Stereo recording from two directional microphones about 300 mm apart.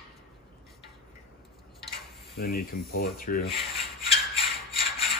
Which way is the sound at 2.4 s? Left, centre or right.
Left.